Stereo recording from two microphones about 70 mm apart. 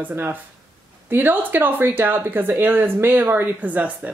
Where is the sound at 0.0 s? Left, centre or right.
Right.